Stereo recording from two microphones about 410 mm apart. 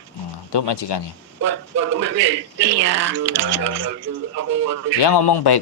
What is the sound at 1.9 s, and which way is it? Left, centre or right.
Speech, right.